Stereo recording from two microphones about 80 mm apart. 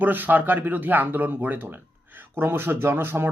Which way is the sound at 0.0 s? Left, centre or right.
Right.